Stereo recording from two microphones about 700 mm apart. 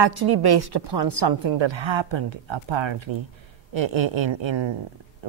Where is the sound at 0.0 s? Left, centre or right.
Right.